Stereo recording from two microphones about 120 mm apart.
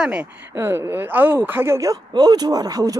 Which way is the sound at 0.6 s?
20° right (ahead or behind).